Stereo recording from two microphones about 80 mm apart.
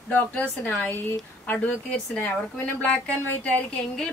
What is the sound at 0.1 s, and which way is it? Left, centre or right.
A woman's voice, left.